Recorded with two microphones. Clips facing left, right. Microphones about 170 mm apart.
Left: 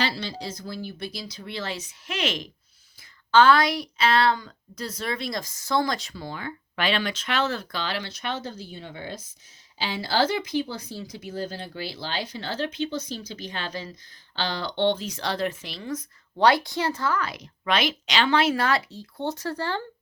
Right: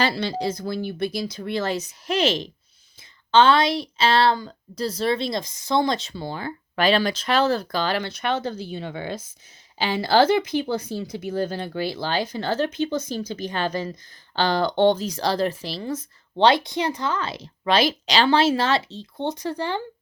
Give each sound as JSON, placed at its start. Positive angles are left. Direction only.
{"t": 0.0, "sound": "speech", "side_deg": -60}
{"t": 9.7, "sound": "speech", "side_deg": -55}